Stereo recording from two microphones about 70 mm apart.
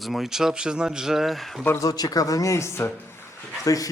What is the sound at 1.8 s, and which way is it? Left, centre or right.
Speech, left.